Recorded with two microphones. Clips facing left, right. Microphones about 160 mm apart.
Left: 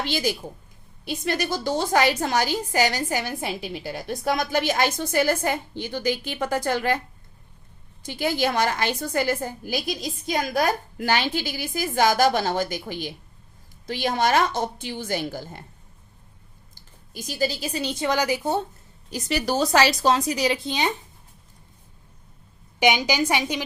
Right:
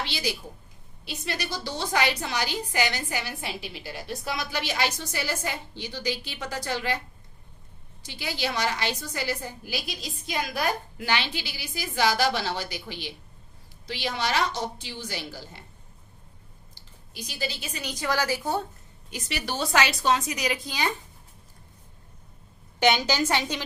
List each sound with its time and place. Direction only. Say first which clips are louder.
0.0 s a woman's voice: left 6 dB; 50° left (ahead or behind)
8.0 s a woman's voice: left 8 dB; 50° left (ahead or behind)
16.7 s a woman's voice: left 4 dB; 45° left (ahead or behind); by 18.6 s 20° left (ahead or behind)
19.1 s a woman's voice: left 8 dB; 40° left (ahead or behind); by 20.9 s 25° left (ahead or behind)
22.8 s a woman's voice: left 2 dB; 10° left (ahead or behind)